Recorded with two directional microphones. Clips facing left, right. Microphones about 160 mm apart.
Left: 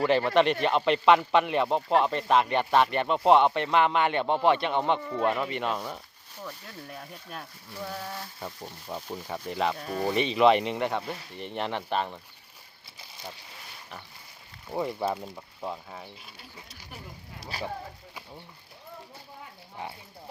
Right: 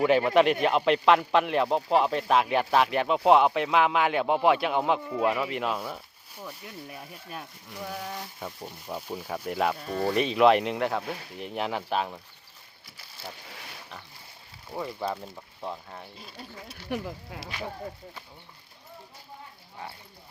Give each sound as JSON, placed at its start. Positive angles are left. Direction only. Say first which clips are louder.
{"t": 0.0, "sound": "a man's voice", "louder": "right 2 dB", "side_deg": -5}
{"t": 14.7, "sound": "speech", "louder": "left 4 dB", "side_deg": 15}
{"t": 15.0, "sound": "a man's voice", "louder": "left 2 dB", "side_deg": 5}
{"t": 16.9, "sound": "speech", "louder": "right 13 dB", "side_deg": -85}